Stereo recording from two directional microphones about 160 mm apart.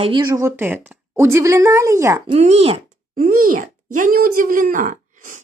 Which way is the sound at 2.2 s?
40° right (ahead or behind).